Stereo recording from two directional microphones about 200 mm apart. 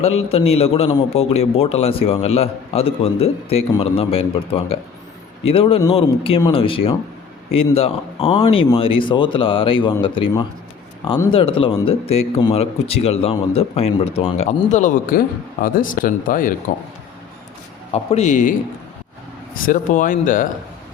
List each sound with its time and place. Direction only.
0.0 s a man's voice: 30° left (ahead or behind)
17.9 s speech: 35° left (ahead or behind)
19.5 s speech: 45° left (ahead or behind)